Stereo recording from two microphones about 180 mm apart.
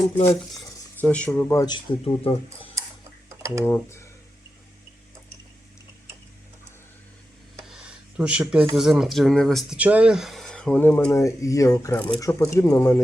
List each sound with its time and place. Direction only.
1.0 s speech: 5° left (ahead or behind); by 2.6 s 30° left (ahead or behind)
3.6 s speech: 15° left (ahead or behind)
7.6 s a sound: 5° right (ahead or behind)
8.7 s speech: centre (ahead or behind); by 13.0 s 15° left (ahead or behind)